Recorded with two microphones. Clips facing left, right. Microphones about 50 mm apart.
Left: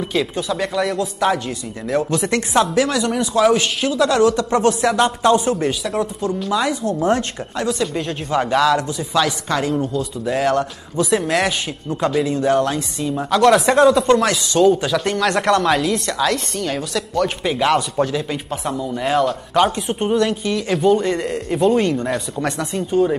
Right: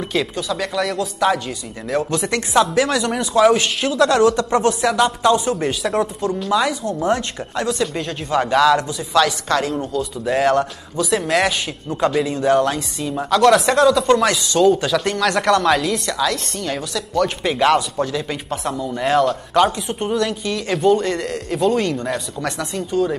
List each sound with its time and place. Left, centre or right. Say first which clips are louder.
0.0 s speech: left 1 dB; centre
2.7 s speech: even; centre
4.9 s speech: left 1 dB; centre
5.5 s speech: even; centre
13.7 s speech: left 1 dB; centre
19.7 s speech: left 3 dB; left
20.2 s speech: left 2 dB; centre